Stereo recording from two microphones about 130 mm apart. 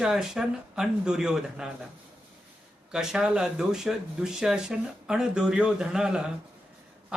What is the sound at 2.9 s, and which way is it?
Speech, 5° right (ahead or behind).